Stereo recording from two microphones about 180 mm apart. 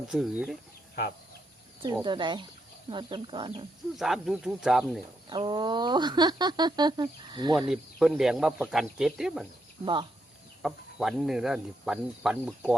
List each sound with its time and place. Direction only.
0.1 s speech: centre (ahead or behind)
2.0 s speech: 25° right (ahead or behind)
3.9 s speech: centre (ahead or behind)
5.3 s speech: 25° right (ahead or behind)
7.7 s speech: centre (ahead or behind)
9.8 s speech: 25° right (ahead or behind)
10.6 s speech: centre (ahead or behind)